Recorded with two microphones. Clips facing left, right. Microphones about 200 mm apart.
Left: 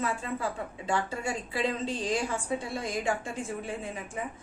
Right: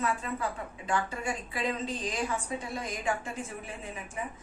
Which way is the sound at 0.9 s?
25° left (ahead or behind).